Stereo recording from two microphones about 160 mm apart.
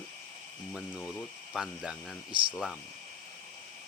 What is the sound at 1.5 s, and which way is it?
Speech, 5° right (ahead or behind).